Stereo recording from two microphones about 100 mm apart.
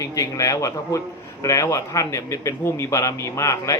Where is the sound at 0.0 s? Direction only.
35° left (ahead or behind).